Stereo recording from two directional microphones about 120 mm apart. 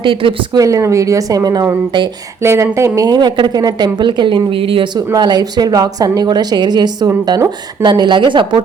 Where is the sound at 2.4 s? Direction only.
25° right (ahead or behind); by 4.9 s 50° right (ahead or behind).